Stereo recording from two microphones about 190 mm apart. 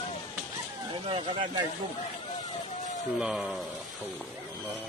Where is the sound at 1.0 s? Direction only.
25° right (ahead or behind).